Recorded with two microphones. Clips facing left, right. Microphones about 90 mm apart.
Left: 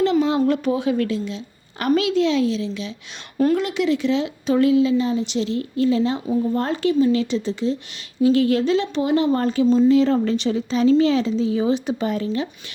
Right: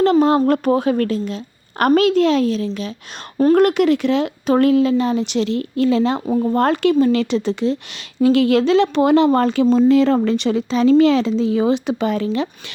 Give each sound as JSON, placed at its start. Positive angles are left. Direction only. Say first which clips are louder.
{"t": 0.0, "sound": "speech", "louder": "right 4 dB", "side_deg": -50}